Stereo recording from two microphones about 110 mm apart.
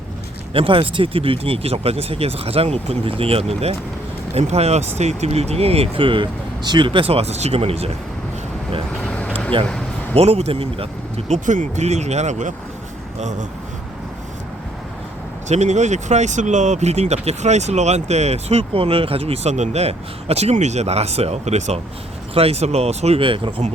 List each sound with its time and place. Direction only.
0.5 s speech: 55° right (ahead or behind); by 4.9 s 80° right
4.9 s speech: 90° right; by 7.9 s 65° right (ahead or behind)
9.0 s vehicle: 10° left (ahead or behind)
9.5 s speech: 50° right (ahead or behind)
10.2 s speech: 70° right (ahead or behind)
11.3 s speech: 90° right
15.4 s speech: 90° right
23.2 s speech: 50° right (ahead or behind)